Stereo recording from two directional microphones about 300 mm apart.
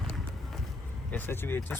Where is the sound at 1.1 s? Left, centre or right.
Centre.